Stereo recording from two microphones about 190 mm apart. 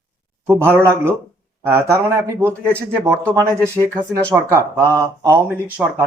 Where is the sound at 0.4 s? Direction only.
10° right (ahead or behind).